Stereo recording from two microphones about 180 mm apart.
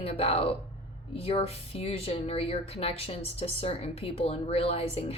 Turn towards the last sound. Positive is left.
turn(degrees=35)  # may be behind; listen again after turning